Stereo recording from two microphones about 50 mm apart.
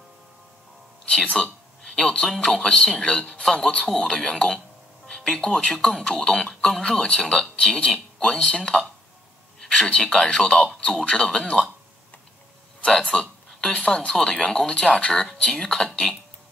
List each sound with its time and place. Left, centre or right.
1.3 s speech: centre
2.2 s speech: centre
9.6 s a sound: centre
9.8 s speech: centre
12.8 s speech: centre